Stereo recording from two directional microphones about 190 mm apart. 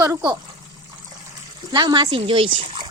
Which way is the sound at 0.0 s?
15° right (ahead or behind).